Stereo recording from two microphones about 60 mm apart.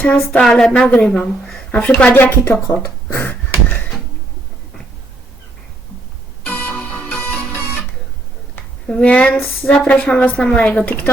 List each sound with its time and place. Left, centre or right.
0.0 s speech: left
0.9 s a woman's voice: centre
1.1 s speech: centre
2.4 s speech: left
2.7 s a sound: left
6.4 s music: left
8.9 s a woman's voice: centre